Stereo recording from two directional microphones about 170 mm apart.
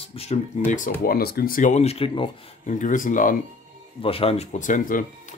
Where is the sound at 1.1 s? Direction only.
65° left (ahead or behind); by 2.3 s 30° left (ahead or behind).